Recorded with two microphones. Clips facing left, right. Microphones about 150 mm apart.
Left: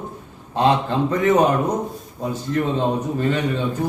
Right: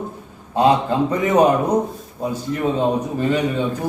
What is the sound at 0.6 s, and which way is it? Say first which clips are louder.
Speech: right 2 dB; 10° right (ahead or behind).